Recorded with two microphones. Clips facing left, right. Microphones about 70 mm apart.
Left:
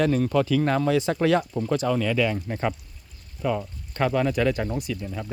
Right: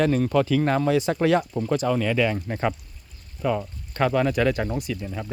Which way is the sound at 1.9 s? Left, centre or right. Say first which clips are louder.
Right 1 dB; right.